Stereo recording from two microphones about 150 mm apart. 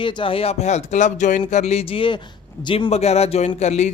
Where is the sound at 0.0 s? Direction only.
35° left (ahead or behind).